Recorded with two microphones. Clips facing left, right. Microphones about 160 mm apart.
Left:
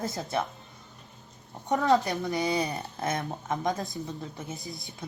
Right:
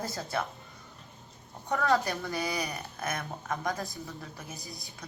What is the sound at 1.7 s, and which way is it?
A woman's voice, 20° left (ahead or behind).